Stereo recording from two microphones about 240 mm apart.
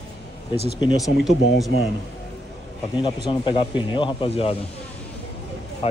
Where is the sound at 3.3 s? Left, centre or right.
Centre.